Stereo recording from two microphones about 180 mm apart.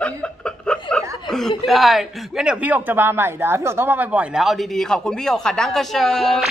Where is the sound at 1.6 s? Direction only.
Centre (ahead or behind).